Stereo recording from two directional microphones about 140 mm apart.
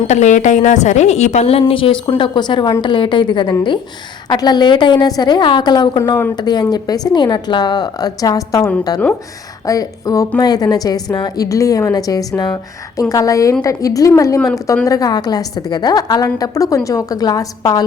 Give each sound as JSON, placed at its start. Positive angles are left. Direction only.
{"t": 0.1, "sound": "a woman's voice", "side_deg": 60}